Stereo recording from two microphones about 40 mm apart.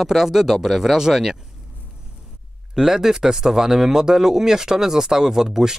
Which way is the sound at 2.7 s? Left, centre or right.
Centre.